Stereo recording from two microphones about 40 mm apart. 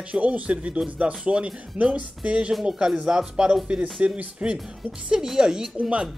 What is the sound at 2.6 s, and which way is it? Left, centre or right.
Speech, right.